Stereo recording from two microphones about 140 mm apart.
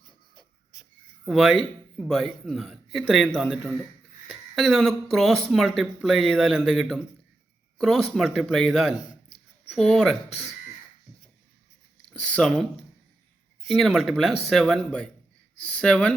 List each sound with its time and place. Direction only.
1.2 s a man's voice: centre (ahead or behind)
10.2 s speech: 50° left (ahead or behind)
12.1 s a man's voice: 5° left (ahead or behind)